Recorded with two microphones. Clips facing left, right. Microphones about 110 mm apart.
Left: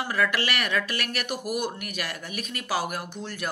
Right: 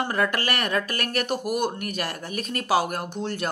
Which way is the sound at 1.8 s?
45° right (ahead or behind).